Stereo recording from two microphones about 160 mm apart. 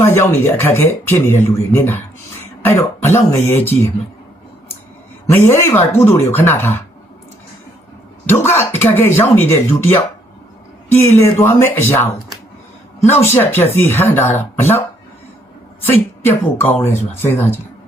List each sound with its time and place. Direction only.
0.0 s speech: 15° left (ahead or behind)
5.3 s speech: 15° left (ahead or behind)
8.4 s speech: 15° left (ahead or behind)
10.9 s speech: 15° left (ahead or behind)
13.2 s speech: 15° left (ahead or behind)
16.2 s speech: 15° left (ahead or behind)